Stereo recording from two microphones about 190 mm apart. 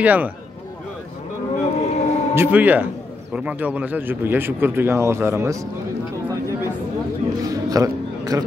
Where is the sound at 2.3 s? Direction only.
10° right (ahead or behind).